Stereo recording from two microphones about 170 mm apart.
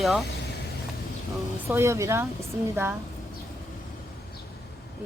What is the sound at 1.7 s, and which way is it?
Speech, 15° right (ahead or behind).